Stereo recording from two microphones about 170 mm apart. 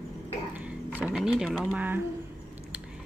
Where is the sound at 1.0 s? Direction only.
5° right (ahead or behind).